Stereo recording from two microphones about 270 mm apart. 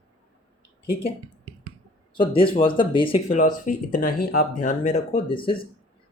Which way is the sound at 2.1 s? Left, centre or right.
Centre.